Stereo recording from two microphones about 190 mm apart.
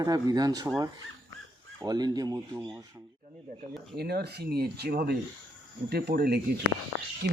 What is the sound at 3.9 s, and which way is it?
Speech, 55° right (ahead or behind).